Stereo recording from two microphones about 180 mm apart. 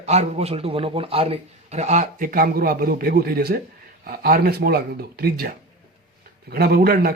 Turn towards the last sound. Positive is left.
turn(degrees=-60)  # may be behind; listen again after turning